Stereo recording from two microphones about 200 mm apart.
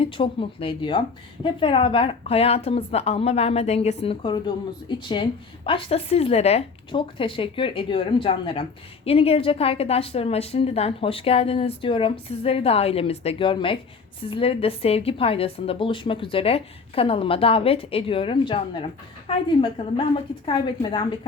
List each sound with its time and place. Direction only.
0.0 s speech: 25° left (ahead or behind)